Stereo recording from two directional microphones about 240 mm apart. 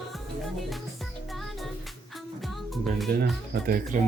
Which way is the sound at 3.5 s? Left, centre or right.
Right.